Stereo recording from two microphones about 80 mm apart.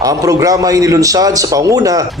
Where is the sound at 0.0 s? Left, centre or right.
Right.